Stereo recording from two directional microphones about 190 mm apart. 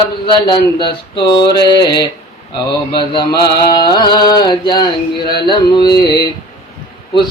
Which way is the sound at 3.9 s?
20° left (ahead or behind).